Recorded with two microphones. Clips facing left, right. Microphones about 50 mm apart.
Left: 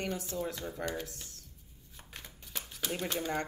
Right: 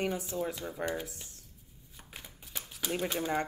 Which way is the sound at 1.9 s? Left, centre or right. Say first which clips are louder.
Even; centre.